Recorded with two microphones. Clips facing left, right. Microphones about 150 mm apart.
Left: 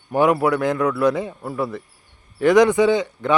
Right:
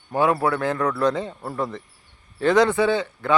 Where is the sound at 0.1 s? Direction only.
15° left (ahead or behind).